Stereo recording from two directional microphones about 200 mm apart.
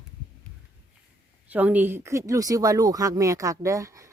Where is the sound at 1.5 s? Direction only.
10° right (ahead or behind).